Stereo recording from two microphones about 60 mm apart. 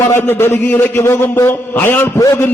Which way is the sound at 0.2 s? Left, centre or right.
Left.